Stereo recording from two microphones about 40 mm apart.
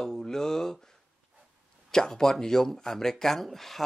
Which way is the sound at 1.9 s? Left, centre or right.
Centre.